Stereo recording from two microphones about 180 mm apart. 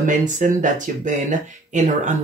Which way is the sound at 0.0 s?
45° right (ahead or behind).